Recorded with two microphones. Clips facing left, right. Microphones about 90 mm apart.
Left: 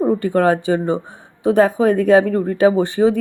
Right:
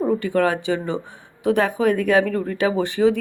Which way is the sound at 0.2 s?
35° left (ahead or behind).